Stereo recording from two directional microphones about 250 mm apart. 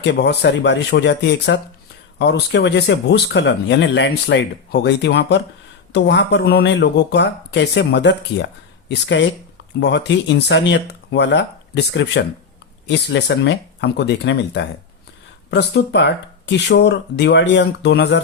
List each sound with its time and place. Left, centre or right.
0.0 s speech: left